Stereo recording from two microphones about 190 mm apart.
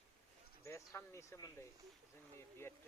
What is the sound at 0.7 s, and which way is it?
Speech, 15° left (ahead or behind).